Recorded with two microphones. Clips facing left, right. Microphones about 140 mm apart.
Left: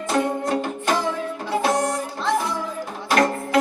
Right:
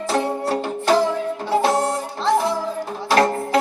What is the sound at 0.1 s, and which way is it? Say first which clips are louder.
Music: even; 30° right (ahead or behind).